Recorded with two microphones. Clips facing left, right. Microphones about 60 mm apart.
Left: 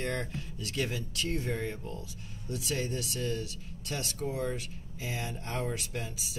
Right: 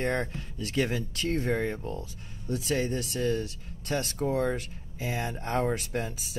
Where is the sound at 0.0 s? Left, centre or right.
Right.